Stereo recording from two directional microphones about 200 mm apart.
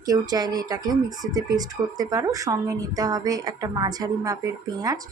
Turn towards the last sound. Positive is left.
turn(degrees=-15)  # may be behind; listen again after turning